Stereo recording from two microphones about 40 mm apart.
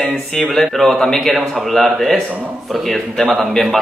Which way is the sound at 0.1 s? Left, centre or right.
Centre.